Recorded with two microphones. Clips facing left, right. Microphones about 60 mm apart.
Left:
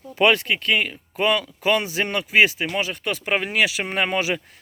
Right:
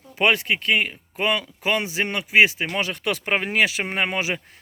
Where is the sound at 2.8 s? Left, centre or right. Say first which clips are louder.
Right 1 dB; right.